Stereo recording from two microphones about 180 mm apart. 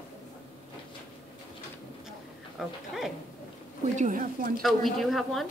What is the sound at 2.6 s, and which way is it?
Speech, centre (ahead or behind).